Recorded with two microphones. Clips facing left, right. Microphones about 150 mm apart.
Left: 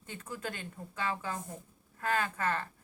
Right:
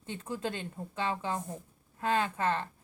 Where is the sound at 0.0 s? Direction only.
25° right (ahead or behind).